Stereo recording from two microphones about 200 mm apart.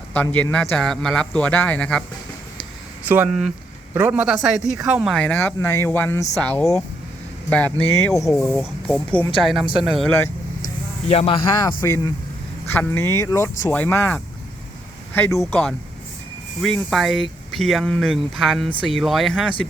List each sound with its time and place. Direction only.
0.1 s a man's voice: 5° left (ahead or behind)
3.1 s a man's voice: 5° right (ahead or behind)
11.1 s speech: 30° left (ahead or behind)
11.8 s speech: 15° left (ahead or behind)
16.6 s a man's voice: centre (ahead or behind)